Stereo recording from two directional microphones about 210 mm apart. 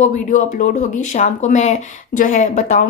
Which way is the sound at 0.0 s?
35° left (ahead or behind).